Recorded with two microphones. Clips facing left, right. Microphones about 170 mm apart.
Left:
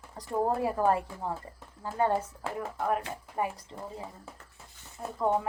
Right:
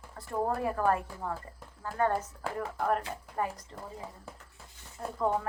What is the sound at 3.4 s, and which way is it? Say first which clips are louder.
Speech: left 1 dB; 10° left (ahead or behind).